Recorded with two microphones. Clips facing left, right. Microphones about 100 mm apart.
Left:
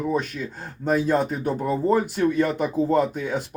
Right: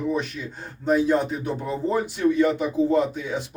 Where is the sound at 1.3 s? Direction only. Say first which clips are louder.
Left 3 dB; 50° left (ahead or behind).